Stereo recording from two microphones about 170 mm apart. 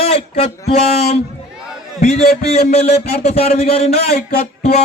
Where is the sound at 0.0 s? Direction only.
40° left (ahead or behind).